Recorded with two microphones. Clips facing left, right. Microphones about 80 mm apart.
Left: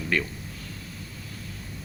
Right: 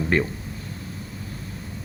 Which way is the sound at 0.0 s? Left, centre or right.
Right.